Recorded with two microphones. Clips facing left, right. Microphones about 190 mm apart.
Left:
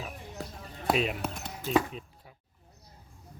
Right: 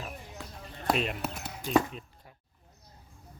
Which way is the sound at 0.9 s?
Centre (ahead or behind).